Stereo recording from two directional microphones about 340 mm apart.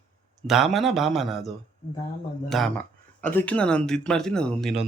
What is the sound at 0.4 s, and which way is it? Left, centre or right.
Mantra, centre.